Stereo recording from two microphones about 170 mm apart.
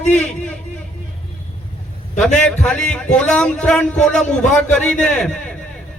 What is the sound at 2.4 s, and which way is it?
A man's voice, 5° left (ahead or behind).